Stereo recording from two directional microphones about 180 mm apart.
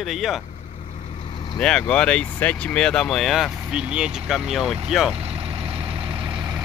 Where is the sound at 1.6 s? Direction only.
5° left (ahead or behind).